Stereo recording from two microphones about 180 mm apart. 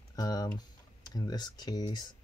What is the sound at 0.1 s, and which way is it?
Typing, 20° left (ahead or behind).